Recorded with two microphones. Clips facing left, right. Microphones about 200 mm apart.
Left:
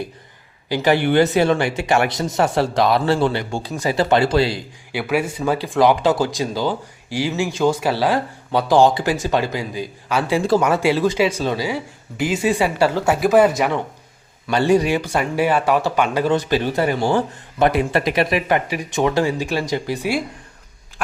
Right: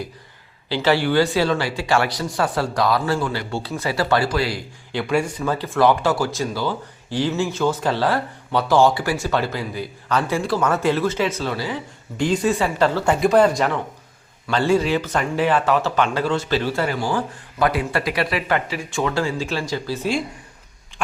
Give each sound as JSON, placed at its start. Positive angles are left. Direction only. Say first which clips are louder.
{"t": 0.7, "sound": "speech", "louder": "left 2 dB", "side_deg": 15}
{"t": 3.5, "sound": "speech", "louder": "left 3 dB", "side_deg": 15}
{"t": 4.9, "sound": "speech", "louder": "even", "side_deg": 5}